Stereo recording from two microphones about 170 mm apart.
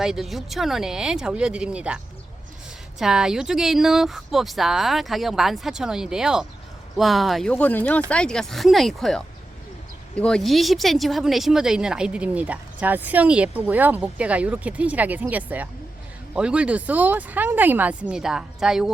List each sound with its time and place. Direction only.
0.0 s speech: centre (ahead or behind)
3.0 s speech: 5° right (ahead or behind)